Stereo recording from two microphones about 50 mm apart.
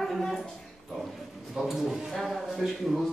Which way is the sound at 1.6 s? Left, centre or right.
Centre.